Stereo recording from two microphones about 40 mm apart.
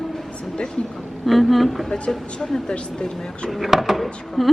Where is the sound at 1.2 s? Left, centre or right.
Centre.